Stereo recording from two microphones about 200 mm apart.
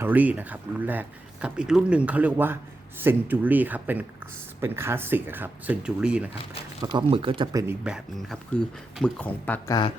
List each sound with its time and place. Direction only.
0.0 s speech: 10° right (ahead or behind)
6.8 s speech: 25° right (ahead or behind)
7.9 s speech: centre (ahead or behind)